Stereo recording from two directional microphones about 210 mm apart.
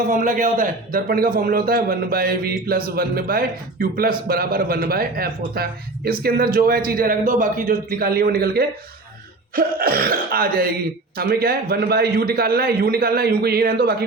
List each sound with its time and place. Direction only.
0.1 s a man's voice: 40° right (ahead or behind)